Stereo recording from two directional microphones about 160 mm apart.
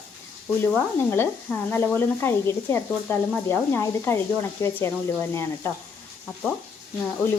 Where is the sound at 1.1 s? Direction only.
15° left (ahead or behind).